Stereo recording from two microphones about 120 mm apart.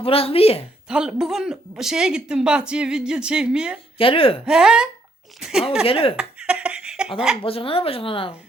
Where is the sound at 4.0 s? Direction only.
50° left (ahead or behind).